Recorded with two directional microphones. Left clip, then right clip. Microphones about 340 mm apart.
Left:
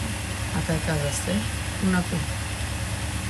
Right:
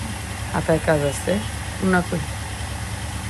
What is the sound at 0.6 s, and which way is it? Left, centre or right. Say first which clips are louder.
Speech: right 10 dB; centre.